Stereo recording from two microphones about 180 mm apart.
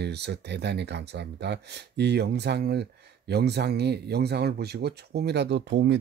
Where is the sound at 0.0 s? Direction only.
65° right (ahead or behind).